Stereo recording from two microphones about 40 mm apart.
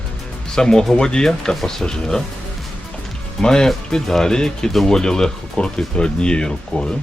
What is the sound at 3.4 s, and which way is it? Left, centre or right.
Speech, centre.